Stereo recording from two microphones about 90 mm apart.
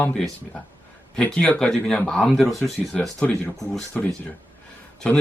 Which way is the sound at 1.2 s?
15° left (ahead or behind).